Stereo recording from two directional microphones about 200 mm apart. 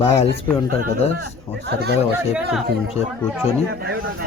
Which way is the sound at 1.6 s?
55° right (ahead or behind).